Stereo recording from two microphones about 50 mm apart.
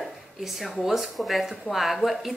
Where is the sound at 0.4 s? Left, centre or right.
Centre.